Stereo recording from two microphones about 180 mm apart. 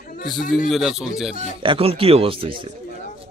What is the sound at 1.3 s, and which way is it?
Speech, 30° right (ahead or behind).